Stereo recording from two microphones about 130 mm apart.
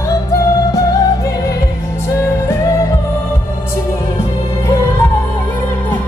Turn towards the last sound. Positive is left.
turn(degrees=20)  # may be behind; listen again after turning